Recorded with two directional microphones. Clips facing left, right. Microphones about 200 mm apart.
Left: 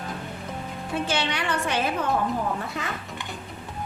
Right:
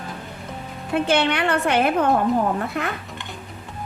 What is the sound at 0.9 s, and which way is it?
A woman's voice, 60° right (ahead or behind).